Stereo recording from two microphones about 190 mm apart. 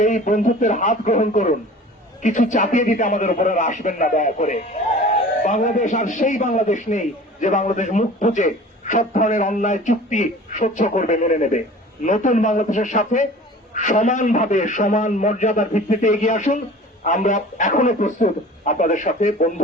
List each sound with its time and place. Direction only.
0.0 s a man's voice: 40° left (ahead or behind)